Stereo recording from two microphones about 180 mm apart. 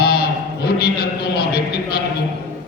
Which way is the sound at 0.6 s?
60° left (ahead or behind).